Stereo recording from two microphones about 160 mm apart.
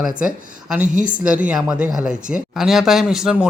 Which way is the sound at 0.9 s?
55° right (ahead or behind).